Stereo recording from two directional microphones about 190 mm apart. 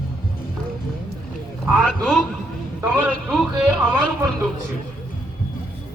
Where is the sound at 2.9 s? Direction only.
5° right (ahead or behind).